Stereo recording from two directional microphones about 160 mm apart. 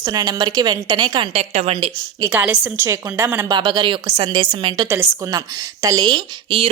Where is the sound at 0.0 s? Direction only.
25° right (ahead or behind).